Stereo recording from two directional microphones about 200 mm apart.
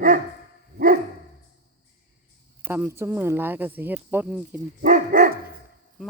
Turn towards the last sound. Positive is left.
turn(degrees=-45)  # may be behind; listen again after turning